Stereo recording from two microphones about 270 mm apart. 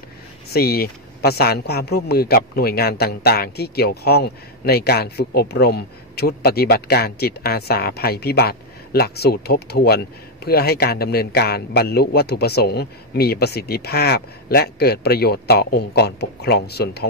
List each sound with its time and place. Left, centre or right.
0.5 s speech: left